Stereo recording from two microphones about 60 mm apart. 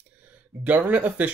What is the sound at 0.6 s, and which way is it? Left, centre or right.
Speech, right.